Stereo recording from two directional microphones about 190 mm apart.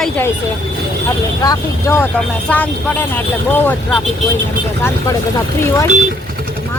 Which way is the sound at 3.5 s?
10° left (ahead or behind).